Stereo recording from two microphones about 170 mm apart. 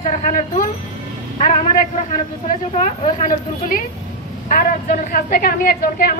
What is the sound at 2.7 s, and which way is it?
A woman's voice, 45° left (ahead or behind).